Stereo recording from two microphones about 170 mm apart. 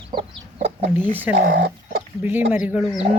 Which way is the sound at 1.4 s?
90° right.